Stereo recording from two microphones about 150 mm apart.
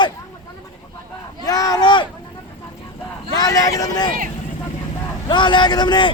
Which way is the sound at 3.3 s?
25° left (ahead or behind).